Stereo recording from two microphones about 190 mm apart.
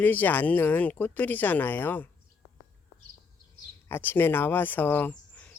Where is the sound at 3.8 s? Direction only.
10° left (ahead or behind).